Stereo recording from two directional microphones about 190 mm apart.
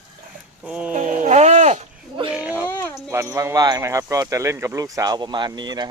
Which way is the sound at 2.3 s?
10° right (ahead or behind).